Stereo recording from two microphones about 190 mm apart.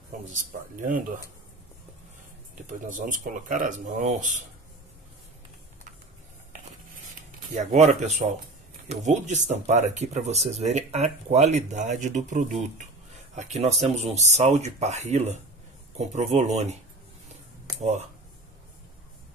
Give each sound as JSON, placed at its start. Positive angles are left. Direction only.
{"t": 0.3, "sound": "speech", "side_deg": -45}
{"t": 2.6, "sound": "speech", "side_deg": -40}
{"t": 7.5, "sound": "speech", "side_deg": -35}